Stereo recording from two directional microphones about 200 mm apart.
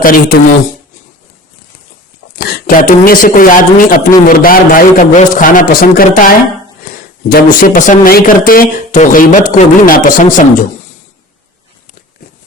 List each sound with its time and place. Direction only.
0.0 s speech: 45° left (ahead or behind)
2.4 s speech: 45° left (ahead or behind)